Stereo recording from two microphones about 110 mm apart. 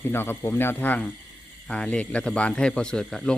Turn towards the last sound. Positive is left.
turn(degrees=5)  # may be behind; listen again after turning